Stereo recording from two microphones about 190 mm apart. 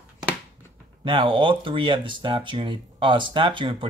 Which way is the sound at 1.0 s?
25° right (ahead or behind).